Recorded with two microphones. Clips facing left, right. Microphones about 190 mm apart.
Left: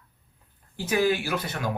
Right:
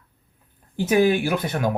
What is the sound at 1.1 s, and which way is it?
Speech, 55° right (ahead or behind).